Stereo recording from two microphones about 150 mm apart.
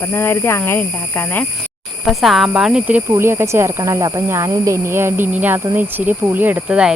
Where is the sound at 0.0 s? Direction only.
15° left (ahead or behind).